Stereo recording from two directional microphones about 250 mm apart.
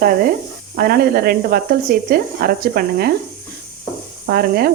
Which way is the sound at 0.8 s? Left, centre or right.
Right.